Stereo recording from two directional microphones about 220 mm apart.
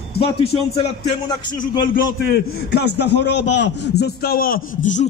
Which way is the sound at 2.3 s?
45° left (ahead or behind).